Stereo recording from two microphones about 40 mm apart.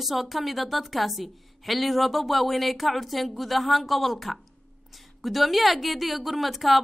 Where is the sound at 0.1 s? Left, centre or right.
Centre.